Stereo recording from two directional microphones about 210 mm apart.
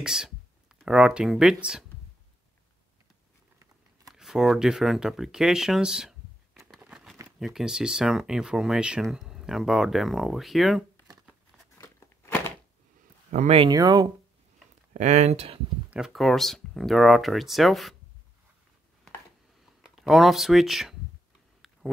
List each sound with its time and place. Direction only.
0.0 s speech: 5° right (ahead or behind)
4.1 s a sound: centre (ahead or behind)
7.2 s speech: 5° right (ahead or behind)
11.8 s a sound: 15° left (ahead or behind)
13.3 s speech: 30° right (ahead or behind)
15.0 s speech: 35° right (ahead or behind)
15.9 s speech: centre (ahead or behind)
19.8 s speech: centre (ahead or behind)